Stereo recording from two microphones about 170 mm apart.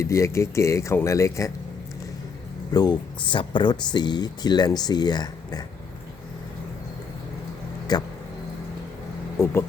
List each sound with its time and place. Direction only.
0.0 s speech: 15° left (ahead or behind)
2.7 s speech: 25° left (ahead or behind)
7.9 s speech: 25° left (ahead or behind)
9.4 s speech: 15° left (ahead or behind)